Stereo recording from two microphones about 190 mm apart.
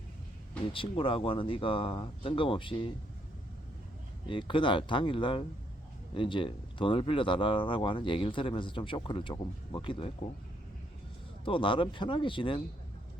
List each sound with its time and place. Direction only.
0.7 s speech: 25° left (ahead or behind)
4.3 s speech: 25° left (ahead or behind)
11.4 s speech: 25° left (ahead or behind)